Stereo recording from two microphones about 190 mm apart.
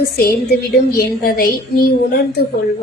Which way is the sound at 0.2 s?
55° left (ahead or behind).